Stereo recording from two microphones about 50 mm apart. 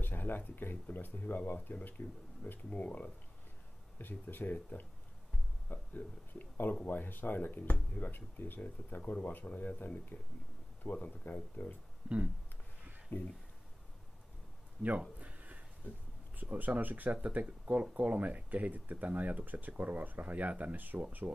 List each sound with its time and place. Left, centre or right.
0.0 s speech: left
4.0 s speech: left
5.7 s speech: left
12.1 s a sound: centre
13.1 s speech: left
14.8 s speech: centre
15.1 s a sound: right
16.3 s speech: right